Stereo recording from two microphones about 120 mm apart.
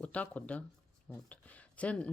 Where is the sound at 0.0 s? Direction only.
10° left (ahead or behind).